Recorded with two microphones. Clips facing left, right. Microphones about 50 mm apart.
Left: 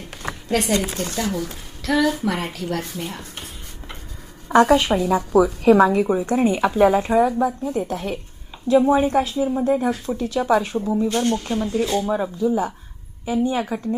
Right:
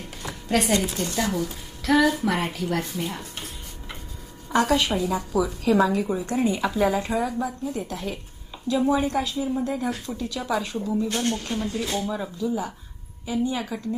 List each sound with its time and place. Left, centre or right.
0.4 s a woman's voice: centre
4.4 s a woman's voice: left
7.9 s a woman's voice: left
8.8 s speech: left